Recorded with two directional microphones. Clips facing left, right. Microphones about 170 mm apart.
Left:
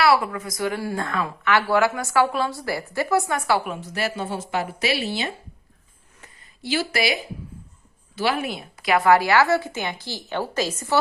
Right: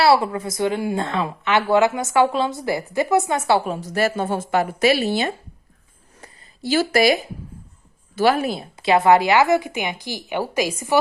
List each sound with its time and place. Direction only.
0.0 s a woman's voice: 25° right (ahead or behind); by 5.3 s 50° right (ahead or behind)
6.2 s a sound: 40° right (ahead or behind)
8.1 s speech: 45° right (ahead or behind); by 10.9 s 10° right (ahead or behind)